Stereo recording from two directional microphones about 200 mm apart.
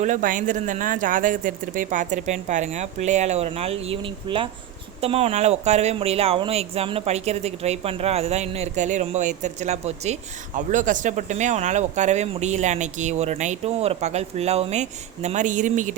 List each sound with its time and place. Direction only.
0.0 s speech: 40° right (ahead or behind)